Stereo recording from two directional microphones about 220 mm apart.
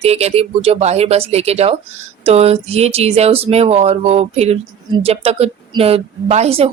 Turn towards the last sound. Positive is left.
turn(degrees=-30)  # may be behind; listen again after turning